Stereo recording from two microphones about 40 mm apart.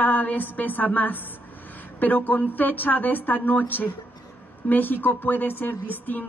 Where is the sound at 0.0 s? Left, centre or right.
Left.